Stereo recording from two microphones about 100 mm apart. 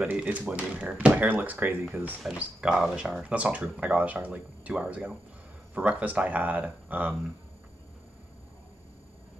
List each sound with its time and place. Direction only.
0.0 s speech: 15° right (ahead or behind)